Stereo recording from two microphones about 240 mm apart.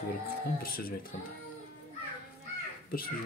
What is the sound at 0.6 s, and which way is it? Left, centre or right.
Speech, left.